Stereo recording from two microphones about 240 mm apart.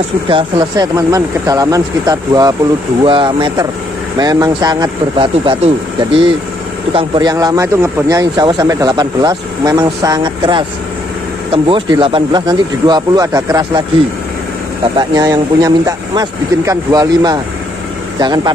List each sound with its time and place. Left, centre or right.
0.3 s speech: centre
6.9 s speech: right
15.0 s speech: centre